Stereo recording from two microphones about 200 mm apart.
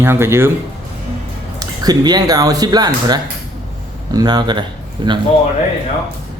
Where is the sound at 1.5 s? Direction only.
20° right (ahead or behind).